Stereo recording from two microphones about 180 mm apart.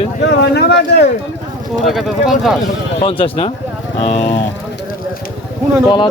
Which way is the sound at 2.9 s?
30° left (ahead or behind).